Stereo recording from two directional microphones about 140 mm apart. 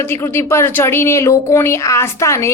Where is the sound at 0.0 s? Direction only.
15° left (ahead or behind).